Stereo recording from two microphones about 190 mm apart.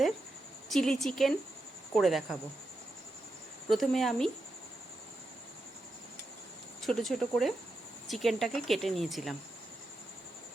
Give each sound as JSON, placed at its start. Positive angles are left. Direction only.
{"t": 0.7, "sound": "speech", "side_deg": 0}
{"t": 3.7, "sound": "speech", "side_deg": 0}
{"t": 6.8, "sound": "speech", "side_deg": 0}